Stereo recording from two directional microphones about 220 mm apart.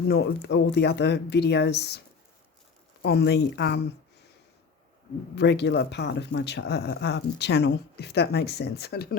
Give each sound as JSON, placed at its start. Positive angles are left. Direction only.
{"t": 0.1, "sound": "speech", "side_deg": 50}
{"t": 5.3, "sound": "speech", "side_deg": 50}